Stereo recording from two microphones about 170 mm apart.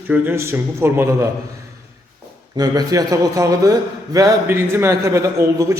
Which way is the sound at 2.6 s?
20° right (ahead or behind).